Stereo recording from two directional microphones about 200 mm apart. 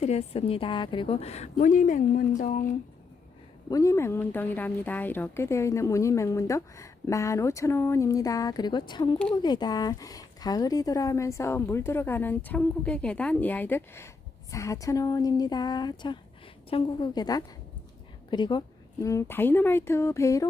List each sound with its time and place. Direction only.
0.0 s a woman's voice: 30° left (ahead or behind)
3.7 s speech: 15° left (ahead or behind)